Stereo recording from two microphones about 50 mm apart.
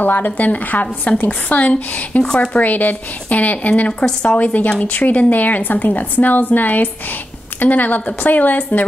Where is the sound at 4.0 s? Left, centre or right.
Centre.